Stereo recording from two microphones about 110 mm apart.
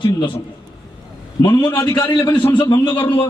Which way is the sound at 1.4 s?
45° left (ahead or behind).